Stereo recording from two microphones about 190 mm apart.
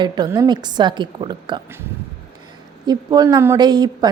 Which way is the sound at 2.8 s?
20° right (ahead or behind).